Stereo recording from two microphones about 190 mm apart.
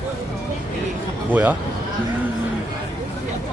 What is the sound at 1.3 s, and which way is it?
Speech, 10° right (ahead or behind).